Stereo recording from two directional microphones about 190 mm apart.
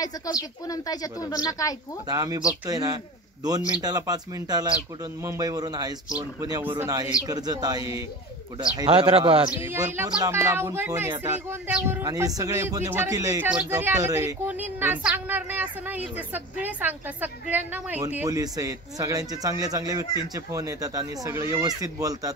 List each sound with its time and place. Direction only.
0.0 s a woman's voice: 20° left (ahead or behind)
2.0 s speech: 20° right (ahead or behind)
9.5 s speech: 10° right (ahead or behind)